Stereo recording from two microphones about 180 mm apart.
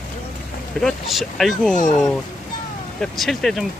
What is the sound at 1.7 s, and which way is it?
Speech, 45° left (ahead or behind).